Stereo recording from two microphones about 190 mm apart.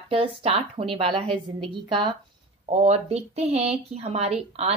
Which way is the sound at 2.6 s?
35° right (ahead or behind).